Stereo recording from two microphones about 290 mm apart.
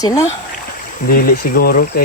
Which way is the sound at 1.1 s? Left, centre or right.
Left.